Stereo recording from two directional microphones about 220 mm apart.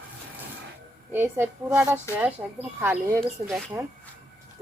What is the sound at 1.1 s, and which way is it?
A woman's voice, 10° right (ahead or behind).